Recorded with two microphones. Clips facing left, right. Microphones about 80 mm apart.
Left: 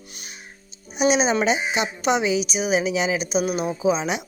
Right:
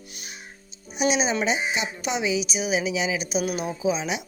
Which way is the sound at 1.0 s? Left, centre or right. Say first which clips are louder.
Left 4 dB; left.